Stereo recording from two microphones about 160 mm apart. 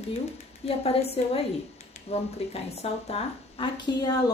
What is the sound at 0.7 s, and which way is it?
A woman's voice, 40° left (ahead or behind).